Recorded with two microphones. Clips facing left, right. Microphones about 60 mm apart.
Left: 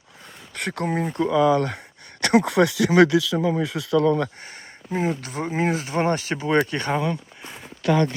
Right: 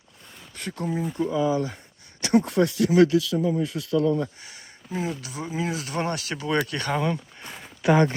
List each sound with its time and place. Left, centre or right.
0.5 s speech: left
2.2 s speech: left
4.4 s speech: left
5.8 s speech: left
7.0 s a sound: centre